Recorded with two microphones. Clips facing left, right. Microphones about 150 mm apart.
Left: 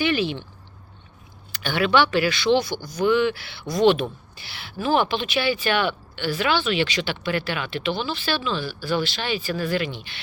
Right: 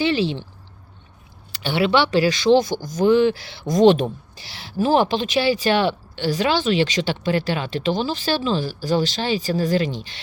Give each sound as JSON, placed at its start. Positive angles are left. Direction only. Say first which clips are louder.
{"t": 0.0, "sound": "speech", "louder": "right 2 dB", "side_deg": -30}
{"t": 1.5, "sound": "speech", "louder": "right 1 dB", "side_deg": -30}